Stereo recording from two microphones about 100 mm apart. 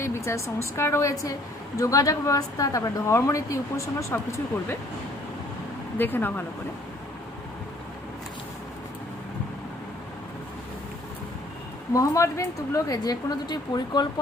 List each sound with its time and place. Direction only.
0.0 s speech: 25° left (ahead or behind)
4.1 s speech: 20° left (ahead or behind)
6.0 s speech: 20° left (ahead or behind)
11.9 s speech: 30° left (ahead or behind)